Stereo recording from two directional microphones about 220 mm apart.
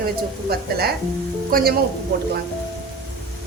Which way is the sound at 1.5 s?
40° right (ahead or behind).